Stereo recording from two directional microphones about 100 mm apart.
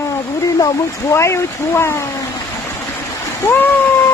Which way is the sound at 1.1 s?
25° left (ahead or behind).